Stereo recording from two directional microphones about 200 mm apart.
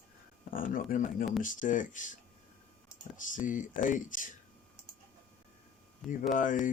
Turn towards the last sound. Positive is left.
turn(degrees=40)  # may be behind; listen again after turning